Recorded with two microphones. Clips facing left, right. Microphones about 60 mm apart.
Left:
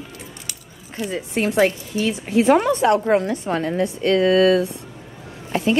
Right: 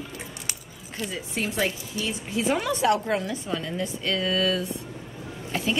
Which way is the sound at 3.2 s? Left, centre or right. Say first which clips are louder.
Left 7 dB; left.